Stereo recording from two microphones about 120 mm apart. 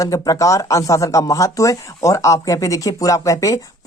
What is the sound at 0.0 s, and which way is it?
Speech, 30° left (ahead or behind).